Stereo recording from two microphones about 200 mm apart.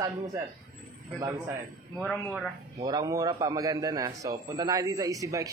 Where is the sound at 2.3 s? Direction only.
15° right (ahead or behind).